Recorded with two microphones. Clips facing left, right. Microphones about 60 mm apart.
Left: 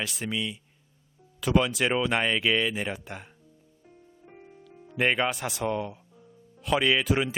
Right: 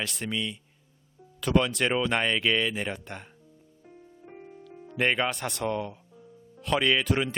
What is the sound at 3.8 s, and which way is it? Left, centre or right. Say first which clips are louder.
Music: right 4 dB; centre.